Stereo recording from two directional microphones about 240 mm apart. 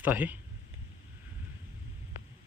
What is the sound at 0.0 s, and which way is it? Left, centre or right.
Speech, centre.